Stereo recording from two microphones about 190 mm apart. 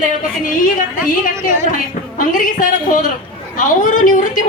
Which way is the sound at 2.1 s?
45° left (ahead or behind).